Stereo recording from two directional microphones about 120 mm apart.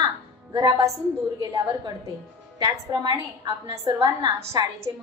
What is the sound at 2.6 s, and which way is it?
A woman's voice, 40° right (ahead or behind).